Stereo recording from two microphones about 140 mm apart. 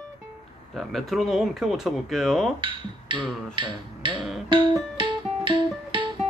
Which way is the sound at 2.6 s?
35° right (ahead or behind).